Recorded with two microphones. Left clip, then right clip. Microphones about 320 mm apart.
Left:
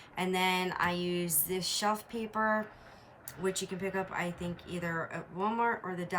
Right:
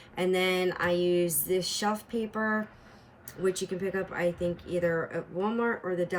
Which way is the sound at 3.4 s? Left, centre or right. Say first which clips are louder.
Right 5 dB; centre.